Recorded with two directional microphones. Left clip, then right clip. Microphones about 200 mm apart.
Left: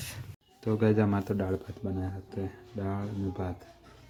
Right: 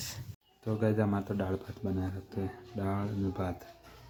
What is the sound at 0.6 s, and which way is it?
Speech, 15° left (ahead or behind).